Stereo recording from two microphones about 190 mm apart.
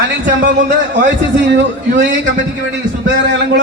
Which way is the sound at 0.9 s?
65° right (ahead or behind).